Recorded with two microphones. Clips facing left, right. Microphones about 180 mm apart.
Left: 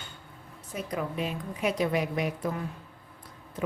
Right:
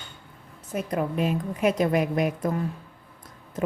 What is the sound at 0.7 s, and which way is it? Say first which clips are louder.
Speech: right 6 dB; 55° right (ahead or behind).